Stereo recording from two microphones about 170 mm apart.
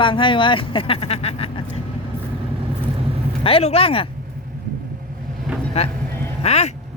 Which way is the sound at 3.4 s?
35° left (ahead or behind).